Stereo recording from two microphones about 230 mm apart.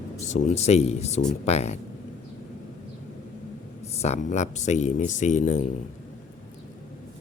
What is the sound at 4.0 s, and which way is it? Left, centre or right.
Speech, left.